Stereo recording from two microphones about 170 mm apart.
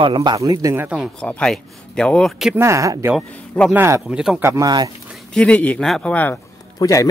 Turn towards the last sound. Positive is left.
turn(degrees=20)  # may be behind; listen again after turning